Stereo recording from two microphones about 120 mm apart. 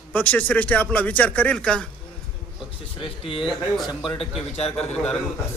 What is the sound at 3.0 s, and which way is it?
Speech, 45° left (ahead or behind).